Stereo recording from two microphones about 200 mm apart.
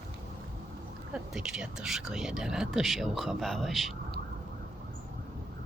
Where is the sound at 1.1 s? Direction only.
5° right (ahead or behind).